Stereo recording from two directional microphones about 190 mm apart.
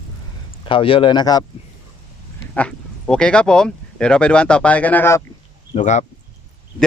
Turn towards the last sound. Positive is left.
turn(degrees=40)  # may be behind; listen again after turning